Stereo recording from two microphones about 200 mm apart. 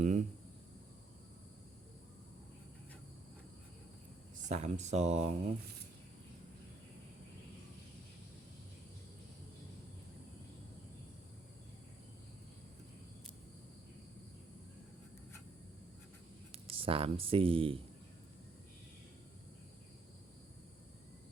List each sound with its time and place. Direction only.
0.0 s a sound: 40° right (ahead or behind)
4.4 s speech: 35° right (ahead or behind)
16.5 s speech: 25° right (ahead or behind)